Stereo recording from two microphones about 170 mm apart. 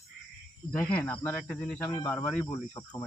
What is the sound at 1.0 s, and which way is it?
Speech, 10° left (ahead or behind).